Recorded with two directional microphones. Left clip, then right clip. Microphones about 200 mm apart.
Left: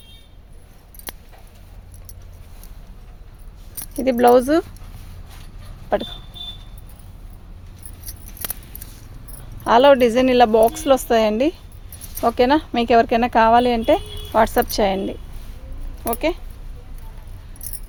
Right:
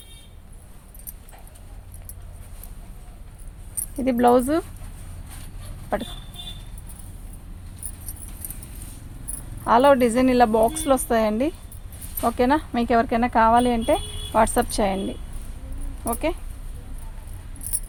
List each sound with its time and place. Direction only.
3.9 s speech: 45° left (ahead or behind)
9.6 s a woman's voice: 40° left (ahead or behind)
16.0 s speech: 50° left (ahead or behind)